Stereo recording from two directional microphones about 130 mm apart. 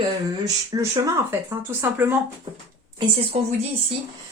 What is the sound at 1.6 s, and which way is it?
Speech, 15° right (ahead or behind).